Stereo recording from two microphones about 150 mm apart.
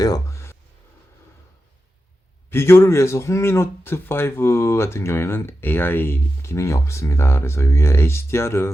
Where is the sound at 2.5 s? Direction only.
15° left (ahead or behind).